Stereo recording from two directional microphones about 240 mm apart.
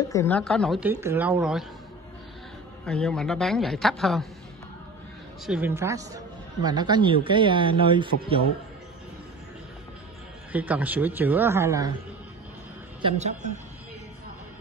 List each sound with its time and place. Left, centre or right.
0.1 s a man's voice: centre
2.8 s a man's voice: centre
5.5 s speech: centre
10.5 s speech: centre
13.0 s speech: right